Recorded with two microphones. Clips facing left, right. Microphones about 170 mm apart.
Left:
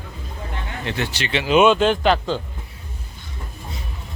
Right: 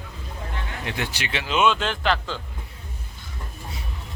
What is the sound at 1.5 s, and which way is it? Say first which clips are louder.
Speech: left 7 dB; 15° left (ahead or behind).